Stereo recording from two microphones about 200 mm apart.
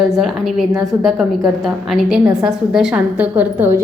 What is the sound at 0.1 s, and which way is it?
A woman's voice, centre (ahead or behind).